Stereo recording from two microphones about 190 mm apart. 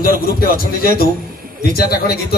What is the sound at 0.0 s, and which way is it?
A man's voice, 50° left (ahead or behind).